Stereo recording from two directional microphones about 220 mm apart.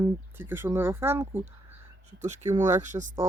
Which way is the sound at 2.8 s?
35° right (ahead or behind).